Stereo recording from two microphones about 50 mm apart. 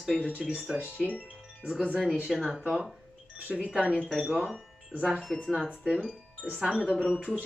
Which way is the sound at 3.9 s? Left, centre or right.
Left.